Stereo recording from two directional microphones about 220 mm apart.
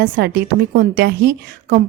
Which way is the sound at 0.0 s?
45° right (ahead or behind).